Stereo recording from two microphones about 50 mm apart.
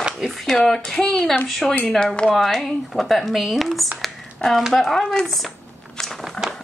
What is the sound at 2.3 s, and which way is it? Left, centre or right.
Speech, centre.